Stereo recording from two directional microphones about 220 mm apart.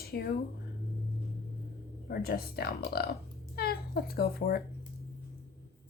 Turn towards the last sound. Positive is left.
turn(degrees=45)  # may be behind; listen again after turning